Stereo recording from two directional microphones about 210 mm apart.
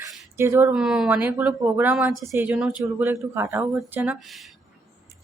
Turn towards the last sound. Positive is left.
turn(degrees=-5)  # may be behind; listen again after turning